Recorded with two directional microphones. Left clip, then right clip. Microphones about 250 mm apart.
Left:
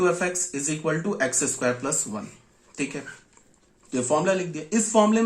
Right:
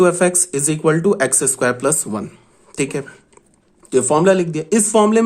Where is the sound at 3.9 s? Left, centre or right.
Right.